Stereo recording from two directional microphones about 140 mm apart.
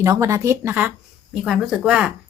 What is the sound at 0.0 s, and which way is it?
A woman's voice, 20° right (ahead or behind).